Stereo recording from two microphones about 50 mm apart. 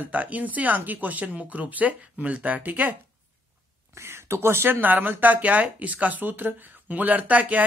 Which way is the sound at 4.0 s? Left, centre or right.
Right.